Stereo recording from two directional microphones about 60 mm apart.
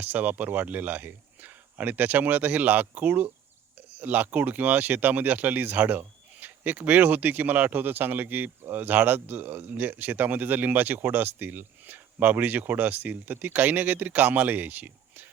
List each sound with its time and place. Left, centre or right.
0.0 s speech: right